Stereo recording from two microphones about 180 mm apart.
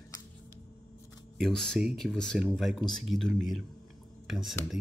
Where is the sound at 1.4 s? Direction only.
Centre (ahead or behind).